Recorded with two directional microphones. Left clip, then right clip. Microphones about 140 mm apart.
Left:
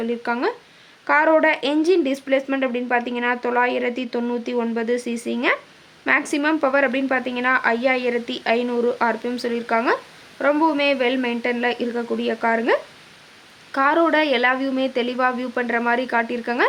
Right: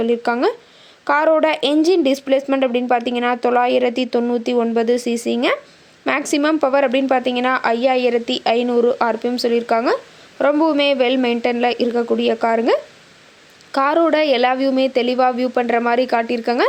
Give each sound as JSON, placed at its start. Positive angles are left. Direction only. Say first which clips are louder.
{"t": 0.0, "sound": "speech", "louder": "right 6 dB", "side_deg": -40}